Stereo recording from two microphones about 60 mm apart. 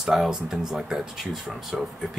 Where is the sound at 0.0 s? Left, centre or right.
Centre.